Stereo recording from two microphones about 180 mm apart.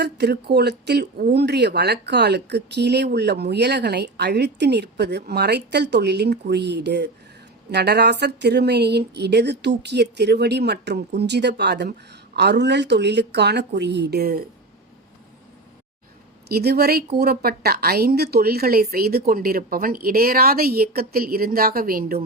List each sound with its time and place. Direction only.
0.0 s speech: 65° right (ahead or behind)
16.5 s a woman's voice: 60° right (ahead or behind)